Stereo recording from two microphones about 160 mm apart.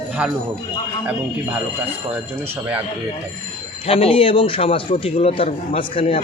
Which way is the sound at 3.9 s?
35° left (ahead or behind).